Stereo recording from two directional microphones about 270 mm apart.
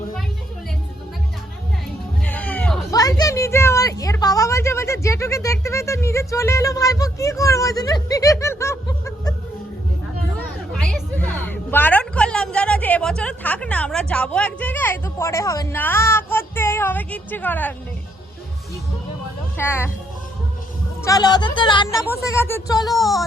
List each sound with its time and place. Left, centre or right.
2.2 s music: centre
2.9 s a woman's voice: centre
10.8 s speech: centre
19.5 s speech: centre
21.0 s speech: centre
22.9 s speech: centre